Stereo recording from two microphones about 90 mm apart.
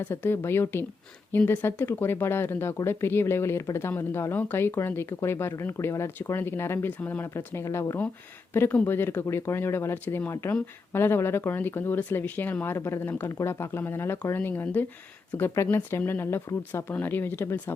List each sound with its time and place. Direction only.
0.0 s speech: 25° left (ahead or behind)
8.5 s speech: 20° left (ahead or behind)